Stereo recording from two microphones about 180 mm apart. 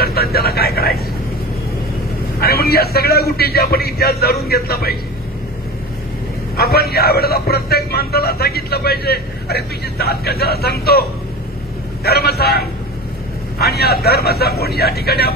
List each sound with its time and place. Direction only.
0.0 s a sound: 60° left (ahead or behind)
2.4 s a man's voice: 60° left (ahead or behind)
6.5 s a man's voice: 60° left (ahead or behind)